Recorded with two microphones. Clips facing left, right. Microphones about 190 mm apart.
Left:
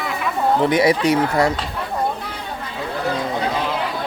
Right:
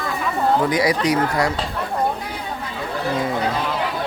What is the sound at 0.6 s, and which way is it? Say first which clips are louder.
Speech: left 3 dB; 25° left (ahead or behind).